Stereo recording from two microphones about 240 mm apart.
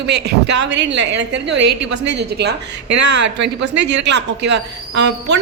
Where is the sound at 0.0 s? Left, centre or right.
Right.